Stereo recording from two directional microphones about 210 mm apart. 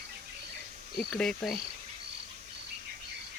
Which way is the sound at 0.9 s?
Centre (ahead or behind).